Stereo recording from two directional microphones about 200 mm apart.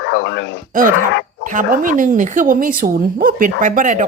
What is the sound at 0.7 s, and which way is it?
Speech, 40° right (ahead or behind).